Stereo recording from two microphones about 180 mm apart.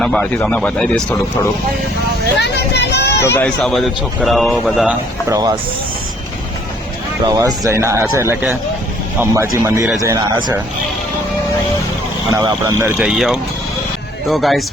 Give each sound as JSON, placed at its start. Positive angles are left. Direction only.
{"t": 0.0, "sound": "speech", "side_deg": 5}
{"t": 2.9, "sound": "a sound", "side_deg": 70}
{"t": 3.2, "sound": "speech", "side_deg": 10}
{"t": 3.6, "sound": "speech", "side_deg": 0}
{"t": 5.3, "sound": "speech", "side_deg": -20}
{"t": 7.3, "sound": "speech", "side_deg": -20}
{"t": 12.3, "sound": "speech", "side_deg": -20}
{"t": 13.0, "sound": "speech", "side_deg": 0}